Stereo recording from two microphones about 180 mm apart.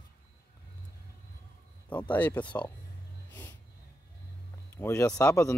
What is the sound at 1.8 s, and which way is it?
Speech, 10° left (ahead or behind).